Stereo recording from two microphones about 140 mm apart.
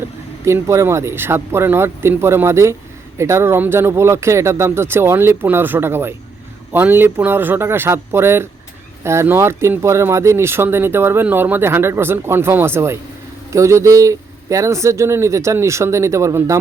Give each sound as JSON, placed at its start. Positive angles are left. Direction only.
{"t": 0.4, "sound": "speech", "side_deg": -20}